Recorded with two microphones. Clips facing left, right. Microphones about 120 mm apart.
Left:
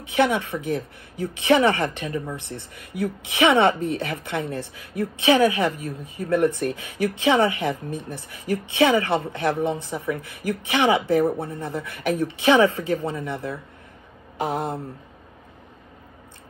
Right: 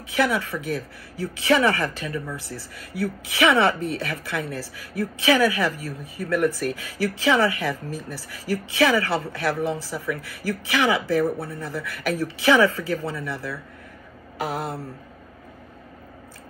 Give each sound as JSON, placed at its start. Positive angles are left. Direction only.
{"t": 0.0, "sound": "a woman's voice", "side_deg": 25}